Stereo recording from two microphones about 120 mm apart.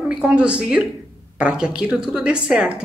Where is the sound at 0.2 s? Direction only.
10° right (ahead or behind).